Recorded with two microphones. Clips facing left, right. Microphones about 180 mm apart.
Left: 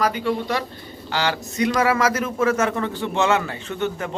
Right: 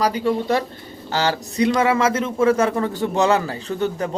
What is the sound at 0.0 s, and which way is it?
A man's voice, 40° right (ahead or behind).